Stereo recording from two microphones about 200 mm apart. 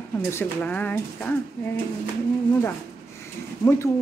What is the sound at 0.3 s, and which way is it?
Speech, 10° left (ahead or behind).